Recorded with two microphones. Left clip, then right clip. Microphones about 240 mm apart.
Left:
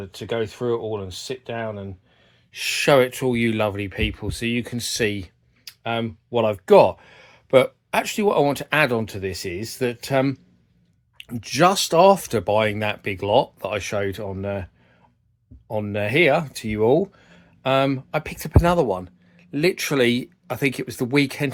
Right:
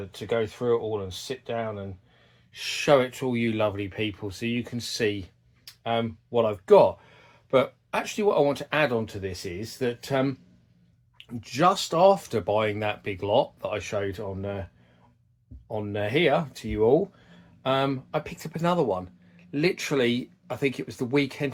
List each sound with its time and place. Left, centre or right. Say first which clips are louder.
0.0 s speech: left 1 dB; left